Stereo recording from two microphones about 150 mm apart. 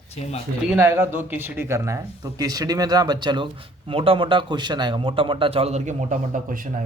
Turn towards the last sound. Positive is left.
turn(degrees=-55)  # may be behind; listen again after turning